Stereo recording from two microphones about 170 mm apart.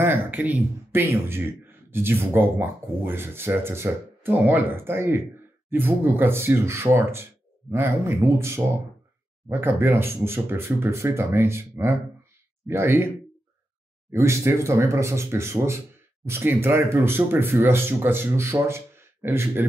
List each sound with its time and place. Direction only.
0.0 s a sound: 15° right (ahead or behind)
0.4 s speech: 10° right (ahead or behind)
14.1 s speech: 15° right (ahead or behind)